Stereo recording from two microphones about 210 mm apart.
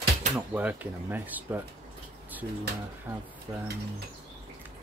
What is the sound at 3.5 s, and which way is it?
Speech, 20° right (ahead or behind).